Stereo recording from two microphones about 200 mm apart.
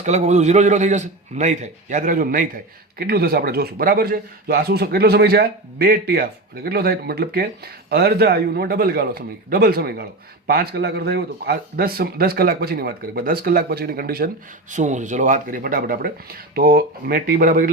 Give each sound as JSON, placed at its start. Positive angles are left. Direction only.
{"t": 0.0, "sound": "a man's voice", "side_deg": -35}
{"t": 14.7, "sound": "a man's voice", "side_deg": -40}